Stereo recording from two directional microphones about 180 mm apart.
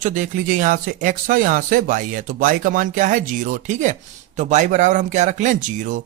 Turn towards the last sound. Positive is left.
turn(degrees=-40)  # may be behind; listen again after turning